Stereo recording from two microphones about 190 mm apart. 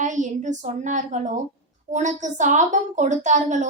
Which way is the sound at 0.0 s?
40° right (ahead or behind).